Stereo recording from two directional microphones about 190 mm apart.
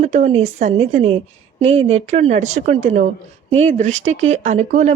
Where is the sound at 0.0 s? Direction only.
35° right (ahead or behind).